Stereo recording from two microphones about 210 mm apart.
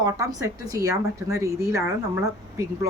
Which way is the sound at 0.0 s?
15° right (ahead or behind).